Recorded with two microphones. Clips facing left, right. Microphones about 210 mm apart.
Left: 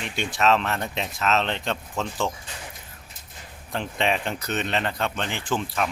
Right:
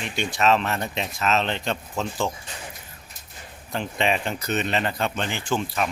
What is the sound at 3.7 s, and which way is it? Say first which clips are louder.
Speech: right 1 dB; 5° right (ahead or behind).